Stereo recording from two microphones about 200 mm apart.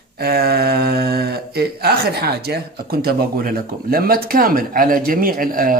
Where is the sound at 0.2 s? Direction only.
50° right (ahead or behind).